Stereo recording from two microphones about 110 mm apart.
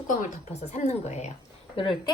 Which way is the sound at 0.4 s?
80° left.